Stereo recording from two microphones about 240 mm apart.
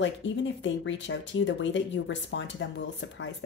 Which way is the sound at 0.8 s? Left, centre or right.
Left.